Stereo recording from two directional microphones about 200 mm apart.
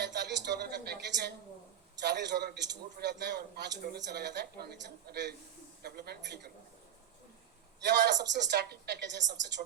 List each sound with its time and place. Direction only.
0.0 s a woman's voice: 60° right (ahead or behind)
7.8 s a man's voice: 55° right (ahead or behind)